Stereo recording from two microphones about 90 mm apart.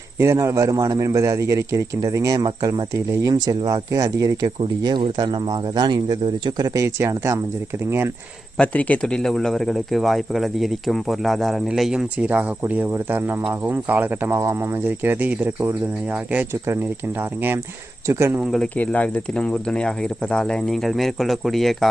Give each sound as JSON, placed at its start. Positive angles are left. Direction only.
{"t": 0.2, "sound": "speech", "side_deg": -30}
{"t": 6.7, "sound": "speech", "side_deg": -35}
{"t": 8.5, "sound": "speech", "side_deg": 15}
{"t": 18.1, "sound": "speech", "side_deg": -30}
{"t": 18.8, "sound": "speech", "side_deg": 15}